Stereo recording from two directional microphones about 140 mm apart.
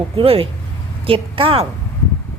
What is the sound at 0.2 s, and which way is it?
A woman's voice, 40° right (ahead or behind).